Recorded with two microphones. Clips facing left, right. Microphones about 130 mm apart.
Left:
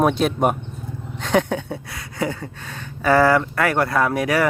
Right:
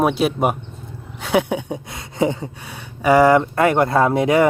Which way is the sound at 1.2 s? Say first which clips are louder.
Right 1 dB; 10° right (ahead or behind).